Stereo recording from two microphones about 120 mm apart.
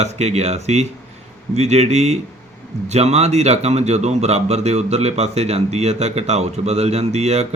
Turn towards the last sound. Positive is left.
turn(degrees=-60)  # may be behind; listen again after turning